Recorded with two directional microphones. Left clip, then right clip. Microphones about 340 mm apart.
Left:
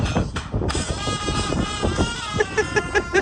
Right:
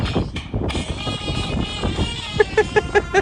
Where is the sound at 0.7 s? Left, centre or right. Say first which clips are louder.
Left 2 dB; centre.